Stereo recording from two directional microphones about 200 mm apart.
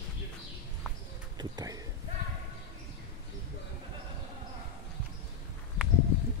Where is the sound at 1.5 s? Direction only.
15° right (ahead or behind).